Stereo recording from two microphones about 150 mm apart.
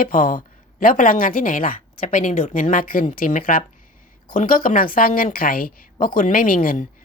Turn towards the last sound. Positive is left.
turn(degrees=65)  # may be behind; listen again after turning